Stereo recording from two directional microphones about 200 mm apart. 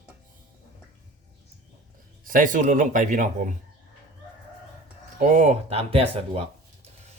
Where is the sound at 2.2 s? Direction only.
45° right (ahead or behind).